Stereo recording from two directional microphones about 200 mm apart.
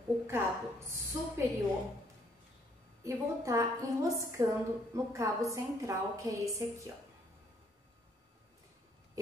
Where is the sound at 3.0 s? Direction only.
15° right (ahead or behind).